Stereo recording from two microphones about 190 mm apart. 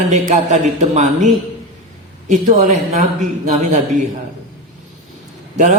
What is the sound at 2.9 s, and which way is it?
Speech, 40° right (ahead or behind).